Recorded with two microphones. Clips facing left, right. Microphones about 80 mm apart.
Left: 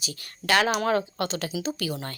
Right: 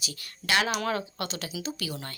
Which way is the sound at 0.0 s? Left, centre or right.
Left.